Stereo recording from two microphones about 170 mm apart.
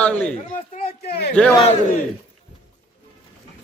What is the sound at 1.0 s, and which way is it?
Speech, 75° left (ahead or behind).